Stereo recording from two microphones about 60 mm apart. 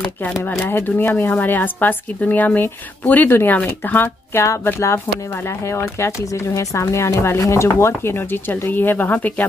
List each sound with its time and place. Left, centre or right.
0.8 s a woman's voice: left
3.3 s a woman's voice: left
3.5 s a woman's voice: left
4.7 s speech: left